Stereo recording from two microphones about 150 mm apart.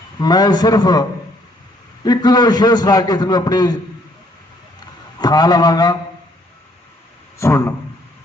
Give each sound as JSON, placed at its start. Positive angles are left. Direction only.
{"t": 0.2, "sound": "a man's voice", "side_deg": 25}
{"t": 2.0, "sound": "a man's voice", "side_deg": 25}
{"t": 5.2, "sound": "a man's voice", "side_deg": 25}
{"t": 7.3, "sound": "a man's voice", "side_deg": 20}